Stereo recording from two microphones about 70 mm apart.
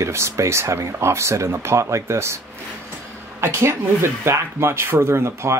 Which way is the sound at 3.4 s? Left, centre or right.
Right.